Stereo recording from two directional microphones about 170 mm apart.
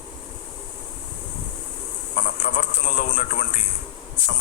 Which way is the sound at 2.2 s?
45° left (ahead or behind).